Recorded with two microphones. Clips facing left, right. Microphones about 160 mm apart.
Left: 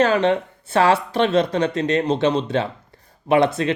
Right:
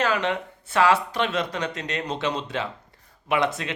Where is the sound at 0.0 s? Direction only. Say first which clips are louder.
Left 7 dB; 30° left (ahead or behind).